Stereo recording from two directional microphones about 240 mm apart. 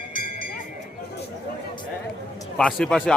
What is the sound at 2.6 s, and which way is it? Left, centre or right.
Speech, centre.